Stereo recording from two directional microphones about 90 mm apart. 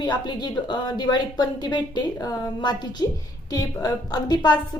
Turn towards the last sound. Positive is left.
turn(degrees=55)  # may be behind; listen again after turning